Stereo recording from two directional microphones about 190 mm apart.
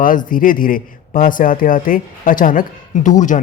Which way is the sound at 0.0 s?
45° left (ahead or behind).